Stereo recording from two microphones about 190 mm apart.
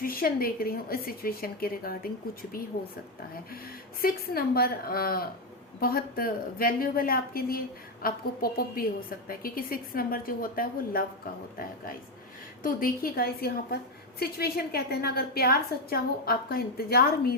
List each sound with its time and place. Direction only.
0.0 s a woman's voice: 50° left (ahead or behind)
4.0 s a woman's voice: 50° left (ahead or behind)
12.6 s a woman's voice: 50° left (ahead or behind)